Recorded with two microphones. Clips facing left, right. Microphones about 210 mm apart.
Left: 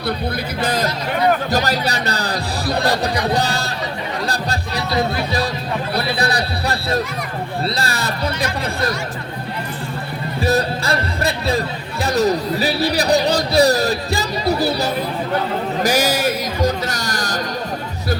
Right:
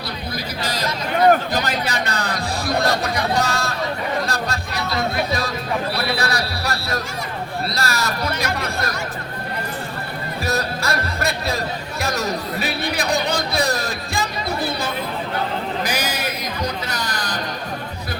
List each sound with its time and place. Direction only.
0.6 s speech: 55° left (ahead or behind)
1.5 s speech: 40° left (ahead or behind)
4.3 s music: 35° left (ahead or behind)
6.1 s a sound: 35° left (ahead or behind)
7.8 s music: 30° left (ahead or behind)
10.4 s music: 30° left (ahead or behind)
12.0 s speech: 30° left (ahead or behind)
15.8 s a sound: 45° left (ahead or behind)